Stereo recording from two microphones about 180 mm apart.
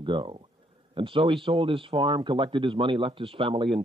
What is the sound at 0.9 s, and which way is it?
A man's voice, 30° right (ahead or behind).